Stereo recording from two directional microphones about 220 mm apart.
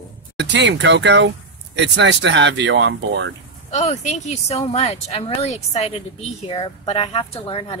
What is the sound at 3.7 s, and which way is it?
A woman's voice, 30° left (ahead or behind).